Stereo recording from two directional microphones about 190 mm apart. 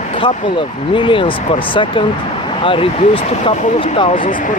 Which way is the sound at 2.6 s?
30° left (ahead or behind).